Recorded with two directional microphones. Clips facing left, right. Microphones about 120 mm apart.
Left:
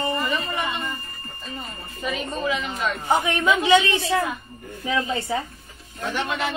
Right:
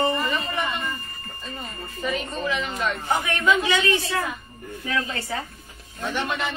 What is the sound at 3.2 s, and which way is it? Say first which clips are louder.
Speech: left 1 dB; 25° left (ahead or behind).